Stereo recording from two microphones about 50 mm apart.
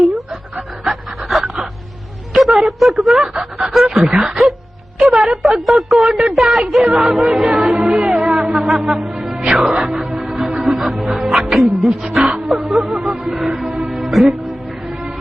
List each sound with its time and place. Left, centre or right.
0.9 s pant: centre
2.3 s a sound: centre
4.3 s music: centre
5.1 s a woman's voice: centre
6.7 s music: centre
9.5 s speech: centre
9.8 s music: centre
11.3 s speech: centre
11.6 s music: centre
12.9 s music: centre
13.2 s music: centre